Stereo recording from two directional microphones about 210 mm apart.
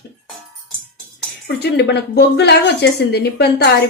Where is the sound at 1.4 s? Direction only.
55° left (ahead or behind).